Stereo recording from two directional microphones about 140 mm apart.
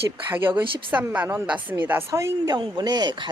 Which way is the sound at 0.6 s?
15° right (ahead or behind).